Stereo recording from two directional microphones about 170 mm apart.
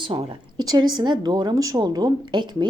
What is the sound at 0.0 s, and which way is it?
A woman's voice, 30° right (ahead or behind).